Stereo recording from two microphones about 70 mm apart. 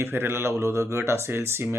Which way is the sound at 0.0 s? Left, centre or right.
Right.